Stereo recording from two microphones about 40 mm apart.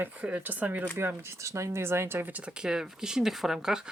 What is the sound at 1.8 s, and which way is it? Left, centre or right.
Speech, right.